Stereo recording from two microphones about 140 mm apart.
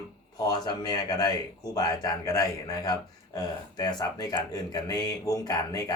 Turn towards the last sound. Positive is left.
turn(degrees=25)  # may be behind; listen again after turning